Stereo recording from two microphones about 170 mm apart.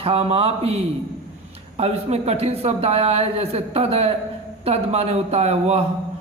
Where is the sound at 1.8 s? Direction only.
40° right (ahead or behind).